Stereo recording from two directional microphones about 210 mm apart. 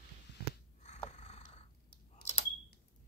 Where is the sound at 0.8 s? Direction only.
35° left (ahead or behind).